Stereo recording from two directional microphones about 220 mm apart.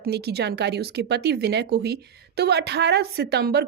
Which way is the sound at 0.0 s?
45° right (ahead or behind).